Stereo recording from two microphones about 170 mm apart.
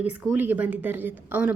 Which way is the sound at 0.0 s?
10° right (ahead or behind).